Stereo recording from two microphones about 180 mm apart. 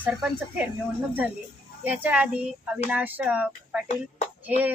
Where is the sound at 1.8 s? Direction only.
5° right (ahead or behind).